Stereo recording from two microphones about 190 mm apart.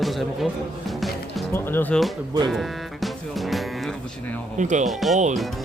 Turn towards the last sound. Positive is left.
turn(degrees=0)  # may be behind; listen again after turning